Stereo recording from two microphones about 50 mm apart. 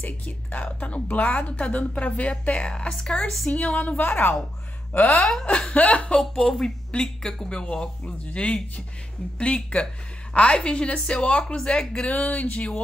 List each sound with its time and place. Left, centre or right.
0.0 s a woman's voice: left
2.9 s speech: centre
3.4 s a woman's voice: left
5.2 s a woman's voice: centre
6.3 s a woman's voice: centre
12.1 s a woman's voice: left